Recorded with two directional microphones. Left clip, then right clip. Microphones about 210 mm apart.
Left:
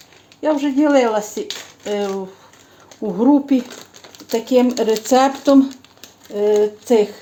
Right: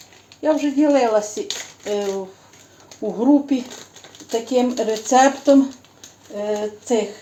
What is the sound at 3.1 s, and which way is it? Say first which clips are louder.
Speech: left 2 dB; 35° left (ahead or behind).